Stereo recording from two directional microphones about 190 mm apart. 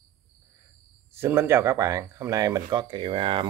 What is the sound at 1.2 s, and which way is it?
Speech, 10° right (ahead or behind).